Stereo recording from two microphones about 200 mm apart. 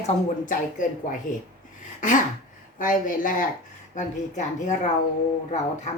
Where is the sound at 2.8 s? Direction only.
40° left (ahead or behind).